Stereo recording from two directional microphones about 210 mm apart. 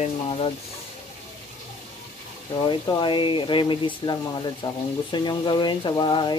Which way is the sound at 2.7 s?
25° left (ahead or behind).